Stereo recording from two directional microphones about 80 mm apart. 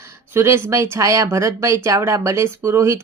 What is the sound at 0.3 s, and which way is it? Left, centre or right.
A woman's voice, right.